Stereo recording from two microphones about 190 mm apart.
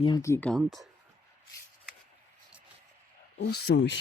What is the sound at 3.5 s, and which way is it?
Speech, 60° left (ahead or behind).